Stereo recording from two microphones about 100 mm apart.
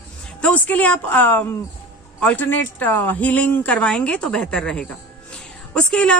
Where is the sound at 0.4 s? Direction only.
15° left (ahead or behind).